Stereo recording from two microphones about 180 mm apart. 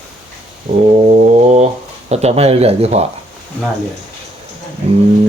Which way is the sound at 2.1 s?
35° right (ahead or behind).